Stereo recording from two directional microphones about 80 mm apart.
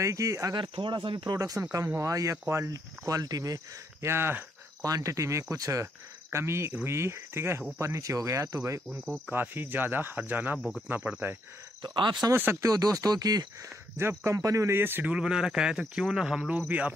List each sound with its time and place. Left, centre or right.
0.0 s speech: right
0.6 s speech: right
1.6 s speech: right
4.0 s speech: right
4.8 s speech: right
8.8 s cricket: centre
9.3 s speech: right
11.8 s speech: right
12.5 s speech: right
13.9 s speech: right
14.3 s speech: right
14.8 s speech: right
15.0 s speech: centre
16.5 s speech: centre